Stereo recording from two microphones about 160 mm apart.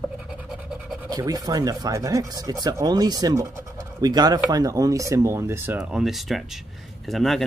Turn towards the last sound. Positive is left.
turn(degrees=0)  # may be behind; listen again after turning